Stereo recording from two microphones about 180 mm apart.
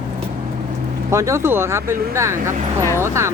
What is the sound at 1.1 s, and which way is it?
Speech, 15° right (ahead or behind).